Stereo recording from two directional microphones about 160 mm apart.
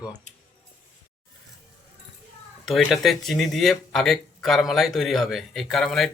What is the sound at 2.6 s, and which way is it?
Speech, centre (ahead or behind).